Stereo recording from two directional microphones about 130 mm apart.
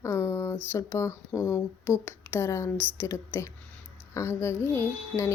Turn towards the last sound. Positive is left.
turn(degrees=20)  # may be behind; listen again after turning